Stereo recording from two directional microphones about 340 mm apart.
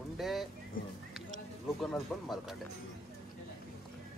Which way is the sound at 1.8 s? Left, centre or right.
Centre.